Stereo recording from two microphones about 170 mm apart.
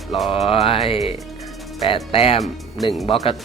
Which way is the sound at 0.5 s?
35° left (ahead or behind).